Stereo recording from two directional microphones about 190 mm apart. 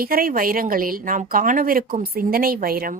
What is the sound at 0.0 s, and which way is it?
Speech, 50° right (ahead or behind).